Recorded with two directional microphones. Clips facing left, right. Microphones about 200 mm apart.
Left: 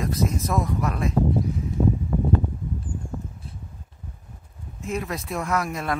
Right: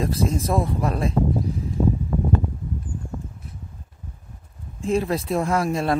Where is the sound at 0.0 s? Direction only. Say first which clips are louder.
Right 2 dB; 30° right (ahead or behind).